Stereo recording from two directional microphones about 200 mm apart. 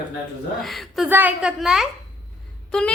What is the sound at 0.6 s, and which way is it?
A woman's voice, centre (ahead or behind).